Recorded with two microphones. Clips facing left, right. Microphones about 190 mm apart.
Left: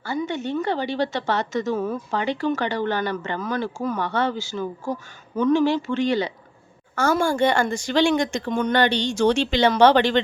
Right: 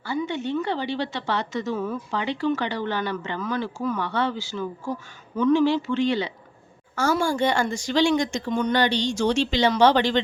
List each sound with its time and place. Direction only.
0.0 s a woman's voice: 45° left (ahead or behind)
6.9 s speech: 55° left (ahead or behind)